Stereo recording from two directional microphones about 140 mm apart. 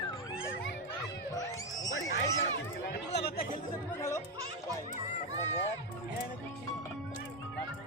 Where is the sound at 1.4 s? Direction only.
25° left (ahead or behind).